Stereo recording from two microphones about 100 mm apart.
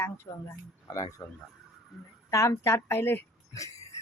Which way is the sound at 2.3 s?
30° left (ahead or behind).